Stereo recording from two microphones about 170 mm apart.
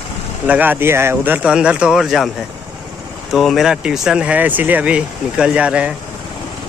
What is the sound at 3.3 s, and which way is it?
Speech, centre (ahead or behind).